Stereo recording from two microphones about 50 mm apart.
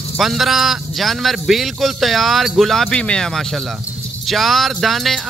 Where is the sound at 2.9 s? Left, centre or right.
Centre.